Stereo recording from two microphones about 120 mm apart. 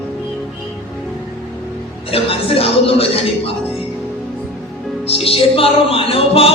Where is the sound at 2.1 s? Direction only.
55° left (ahead or behind).